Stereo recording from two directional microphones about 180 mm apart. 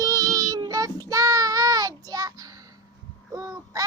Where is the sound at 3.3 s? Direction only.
20° right (ahead or behind).